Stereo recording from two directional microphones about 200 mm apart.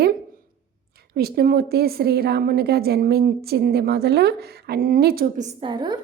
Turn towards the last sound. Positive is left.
turn(degrees=-25)  # may be behind; listen again after turning